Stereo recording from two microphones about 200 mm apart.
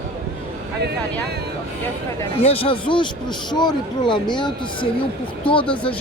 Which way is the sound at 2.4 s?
30° left (ahead or behind).